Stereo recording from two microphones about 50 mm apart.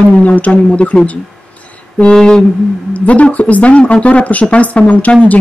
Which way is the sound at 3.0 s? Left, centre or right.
Left.